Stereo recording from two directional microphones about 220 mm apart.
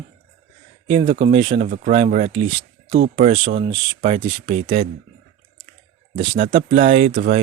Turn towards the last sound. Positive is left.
turn(degrees=-35)  # may be behind; listen again after turning